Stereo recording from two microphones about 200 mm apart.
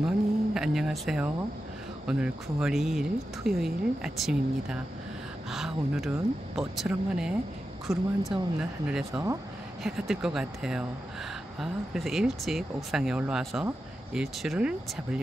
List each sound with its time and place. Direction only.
0.6 s speech: centre (ahead or behind)
9.1 s speech: 15° right (ahead or behind)
9.8 s speech: centre (ahead or behind)